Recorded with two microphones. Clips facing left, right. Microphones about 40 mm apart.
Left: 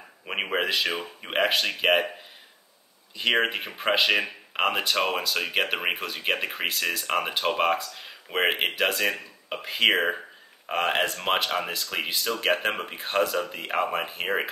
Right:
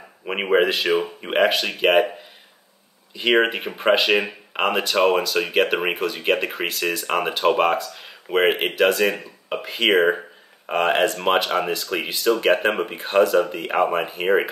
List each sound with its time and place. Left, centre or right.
0.3 s speech: centre
0.8 s speech: right
1.2 s speech: centre
3.4 s speech: centre
10.7 s speech: centre